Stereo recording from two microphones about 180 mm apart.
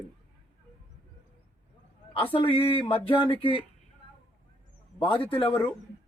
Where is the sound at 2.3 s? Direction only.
30° left (ahead or behind).